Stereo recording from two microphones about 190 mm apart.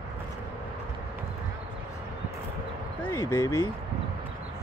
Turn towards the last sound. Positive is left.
turn(degrees=15)  # may be behind; listen again after turning